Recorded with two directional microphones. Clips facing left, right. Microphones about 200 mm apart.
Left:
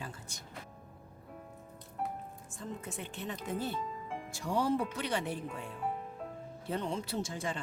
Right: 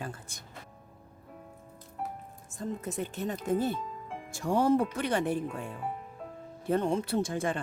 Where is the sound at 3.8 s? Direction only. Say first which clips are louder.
Even; centre (ahead or behind).